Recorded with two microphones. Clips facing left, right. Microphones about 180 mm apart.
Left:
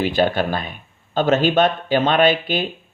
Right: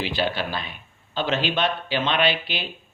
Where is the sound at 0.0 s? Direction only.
50° left (ahead or behind).